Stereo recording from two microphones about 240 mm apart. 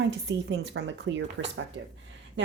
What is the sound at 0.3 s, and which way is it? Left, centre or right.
Speech, right.